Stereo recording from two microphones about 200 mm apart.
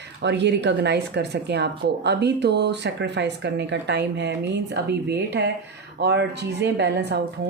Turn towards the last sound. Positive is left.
turn(degrees=-55)  # may be behind; listen again after turning